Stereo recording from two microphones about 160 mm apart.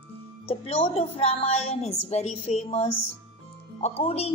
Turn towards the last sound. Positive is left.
turn(degrees=40)  # may be behind; listen again after turning